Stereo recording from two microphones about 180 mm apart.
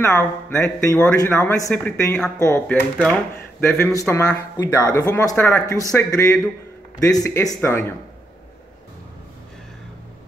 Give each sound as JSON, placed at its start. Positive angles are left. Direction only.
{"t": 0.0, "sound": "speech", "side_deg": 15}